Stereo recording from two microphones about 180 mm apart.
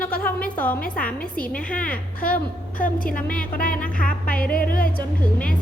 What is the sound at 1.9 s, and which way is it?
A woman's voice, 50° left (ahead or behind).